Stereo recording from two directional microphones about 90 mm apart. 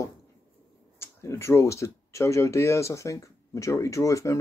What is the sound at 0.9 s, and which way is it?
Speech, 30° left (ahead or behind).